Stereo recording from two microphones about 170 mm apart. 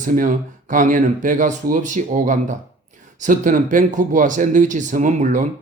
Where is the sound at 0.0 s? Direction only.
50° right (ahead or behind).